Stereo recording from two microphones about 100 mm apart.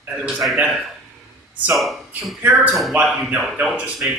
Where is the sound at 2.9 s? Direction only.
10° right (ahead or behind).